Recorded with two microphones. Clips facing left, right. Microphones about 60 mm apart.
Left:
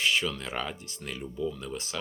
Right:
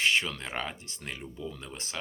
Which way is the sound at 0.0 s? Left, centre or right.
Right.